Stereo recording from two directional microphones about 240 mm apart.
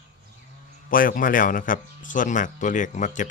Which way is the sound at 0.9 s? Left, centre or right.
Left.